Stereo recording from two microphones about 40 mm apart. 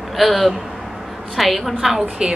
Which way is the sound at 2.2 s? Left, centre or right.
Centre.